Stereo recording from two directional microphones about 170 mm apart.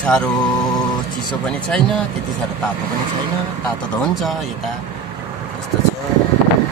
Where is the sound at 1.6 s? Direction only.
5° left (ahead or behind).